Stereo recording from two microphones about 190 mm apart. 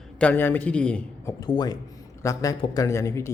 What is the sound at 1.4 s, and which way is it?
A man's voice, 20° left (ahead or behind).